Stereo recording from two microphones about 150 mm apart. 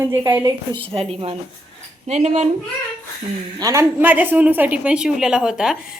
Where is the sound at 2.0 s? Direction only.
50° right (ahead or behind).